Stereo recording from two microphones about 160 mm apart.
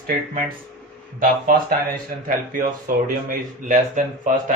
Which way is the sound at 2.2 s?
60° right (ahead or behind).